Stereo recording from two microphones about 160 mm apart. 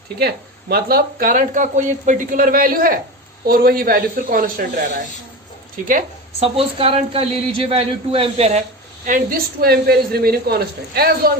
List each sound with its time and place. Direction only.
0.2 s speech: 75° right (ahead or behind)
5.8 s speech: 60° right (ahead or behind)
6.4 s speech: 35° right (ahead or behind)
9.0 s speech: 60° right (ahead or behind)